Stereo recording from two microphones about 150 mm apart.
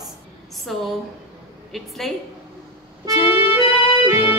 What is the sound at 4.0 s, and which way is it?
Music, 35° left (ahead or behind).